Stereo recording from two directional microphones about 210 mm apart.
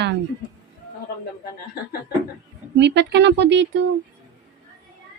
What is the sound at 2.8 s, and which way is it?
A woman's voice, 55° right (ahead or behind).